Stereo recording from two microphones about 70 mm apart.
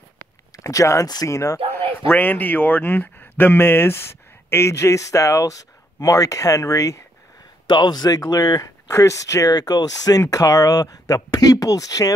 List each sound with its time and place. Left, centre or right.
0.7 s speech: left
1.0 s speech: left
1.3 s speech: left
1.7 s speech: left
7.7 s speech: left
8.3 s speech: left
8.9 s speech: left